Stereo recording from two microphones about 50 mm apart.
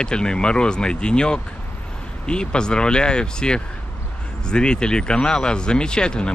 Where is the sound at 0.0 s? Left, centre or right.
Centre.